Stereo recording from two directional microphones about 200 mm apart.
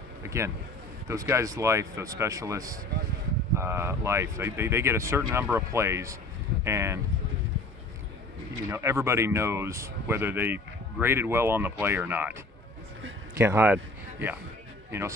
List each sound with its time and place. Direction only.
0.2 s a sound: 15° right (ahead or behind)
1.0 s speech: 15° right (ahead or behind)
8.6 s speech: 15° right (ahead or behind)
13.4 s speech: 10° right (ahead or behind)
14.9 s speech: 15° right (ahead or behind)